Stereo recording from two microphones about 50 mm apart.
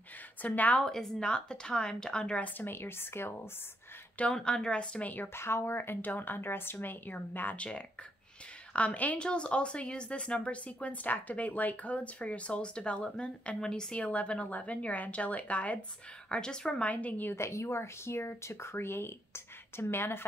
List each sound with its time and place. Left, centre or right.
0.4 s a woman's voice: left
0.8 s a woman's voice: centre
2.5 s a woman's voice: left
4.3 s a woman's voice: centre
5.0 s a woman's voice: left
5.3 s speech: left
5.9 s a woman's voice: left
7.5 s a woman's voice: left
9.2 s speech: left
16.3 s a woman's voice: centre
16.8 s a woman's voice: left
17.4 s speech: left